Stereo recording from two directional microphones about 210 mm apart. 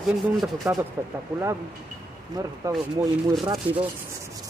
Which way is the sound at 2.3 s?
15° right (ahead or behind).